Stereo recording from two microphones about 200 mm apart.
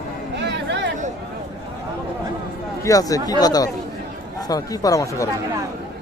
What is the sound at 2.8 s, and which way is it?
Speech, 15° left (ahead or behind).